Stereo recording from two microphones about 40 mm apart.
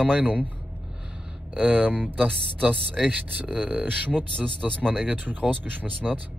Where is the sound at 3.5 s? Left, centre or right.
Right.